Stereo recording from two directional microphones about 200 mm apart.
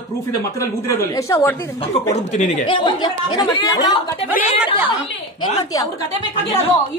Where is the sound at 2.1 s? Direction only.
35° left (ahead or behind).